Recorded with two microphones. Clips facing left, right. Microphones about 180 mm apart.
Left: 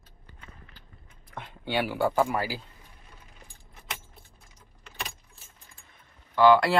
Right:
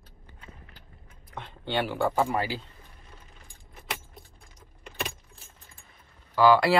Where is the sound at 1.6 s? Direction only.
10° left (ahead or behind).